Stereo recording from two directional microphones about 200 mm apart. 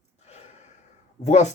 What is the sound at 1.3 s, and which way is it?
Speech, 35° left (ahead or behind).